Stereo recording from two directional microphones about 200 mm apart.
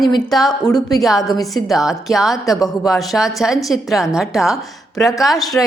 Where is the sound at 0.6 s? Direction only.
20° left (ahead or behind).